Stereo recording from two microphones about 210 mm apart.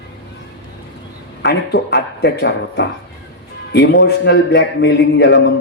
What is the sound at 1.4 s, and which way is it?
A man's voice, 55° left (ahead or behind).